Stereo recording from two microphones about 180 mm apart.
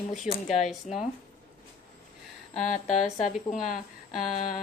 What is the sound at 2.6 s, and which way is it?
Speech, 40° left (ahead or behind).